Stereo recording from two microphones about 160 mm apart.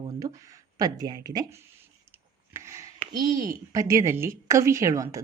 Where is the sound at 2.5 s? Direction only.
15° right (ahead or behind).